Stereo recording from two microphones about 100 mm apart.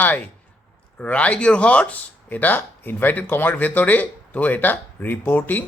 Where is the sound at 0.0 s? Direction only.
20° left (ahead or behind).